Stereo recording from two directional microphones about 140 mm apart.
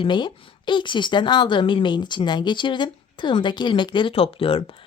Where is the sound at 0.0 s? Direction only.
35° left (ahead or behind).